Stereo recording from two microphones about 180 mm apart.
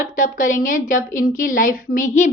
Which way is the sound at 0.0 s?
45° left (ahead or behind).